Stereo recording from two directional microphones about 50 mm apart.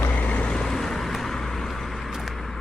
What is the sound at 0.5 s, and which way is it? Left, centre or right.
Vehicle, centre.